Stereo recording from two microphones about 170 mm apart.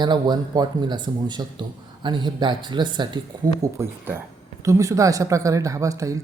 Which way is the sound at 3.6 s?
15° right (ahead or behind).